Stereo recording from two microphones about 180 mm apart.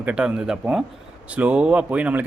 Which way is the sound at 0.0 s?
5° right (ahead or behind).